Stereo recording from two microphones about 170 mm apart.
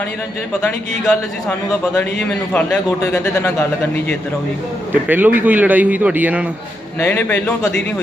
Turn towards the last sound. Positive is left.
turn(degrees=10)  # may be behind; listen again after turning